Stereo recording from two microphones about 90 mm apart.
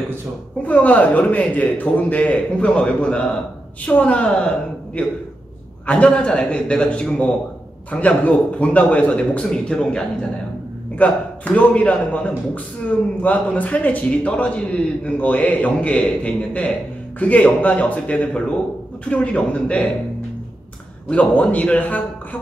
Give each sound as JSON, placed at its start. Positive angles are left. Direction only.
{"t": 0.7, "sound": "a man's voice", "side_deg": 15}
{"t": 21.1, "sound": "a man's voice", "side_deg": 15}